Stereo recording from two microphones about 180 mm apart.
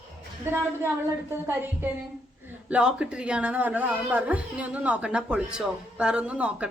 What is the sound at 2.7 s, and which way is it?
Speech, 5° right (ahead or behind).